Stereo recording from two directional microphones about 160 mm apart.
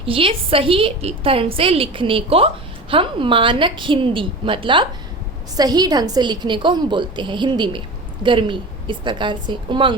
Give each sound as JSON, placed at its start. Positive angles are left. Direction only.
{"t": 0.0, "sound": "a woman's voice", "side_deg": -35}